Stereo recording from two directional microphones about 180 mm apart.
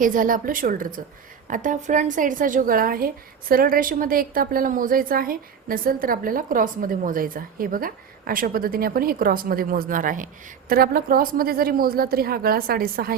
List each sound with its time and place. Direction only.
0.0 s a woman's voice: 50° right (ahead or behind)